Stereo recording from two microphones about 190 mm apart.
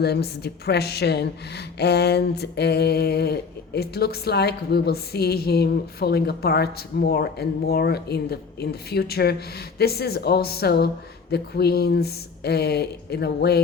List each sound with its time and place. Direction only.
0.0 s a woman's voice: 60° left (ahead or behind)